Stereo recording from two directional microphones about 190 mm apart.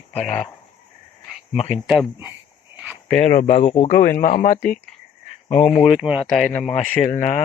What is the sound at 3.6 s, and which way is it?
Speech, 30° left (ahead or behind).